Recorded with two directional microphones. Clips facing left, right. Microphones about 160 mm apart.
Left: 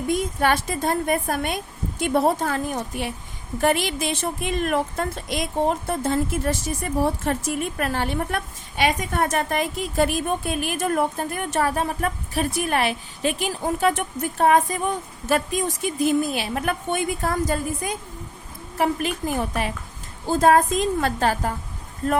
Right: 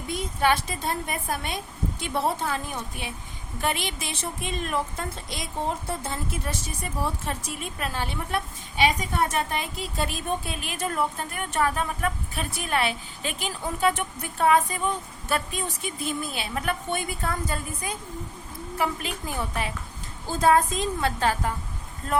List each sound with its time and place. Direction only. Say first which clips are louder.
0.1 s a woman's voice: left 2 dB; 50° left (ahead or behind)
18.8 s a woman's voice: left 6 dB; 50° left (ahead or behind)